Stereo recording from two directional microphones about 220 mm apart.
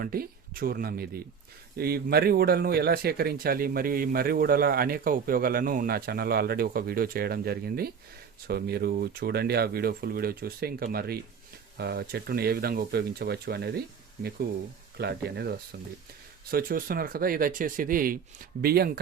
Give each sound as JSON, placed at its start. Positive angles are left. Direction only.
{"t": 0.0, "sound": "speech", "side_deg": -40}